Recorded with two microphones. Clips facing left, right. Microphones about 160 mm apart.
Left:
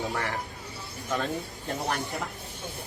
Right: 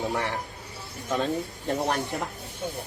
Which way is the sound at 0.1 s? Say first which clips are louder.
Right 3 dB; 20° right (ahead or behind).